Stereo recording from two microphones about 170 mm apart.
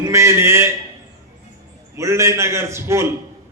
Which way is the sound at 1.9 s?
15° right (ahead or behind).